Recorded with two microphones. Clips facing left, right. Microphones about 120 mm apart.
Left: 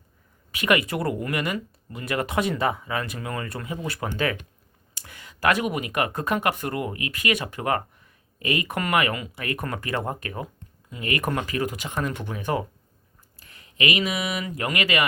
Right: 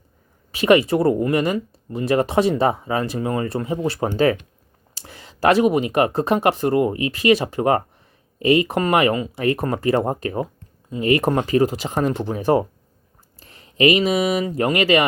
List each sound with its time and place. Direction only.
0.5 s speech: 30° right (ahead or behind)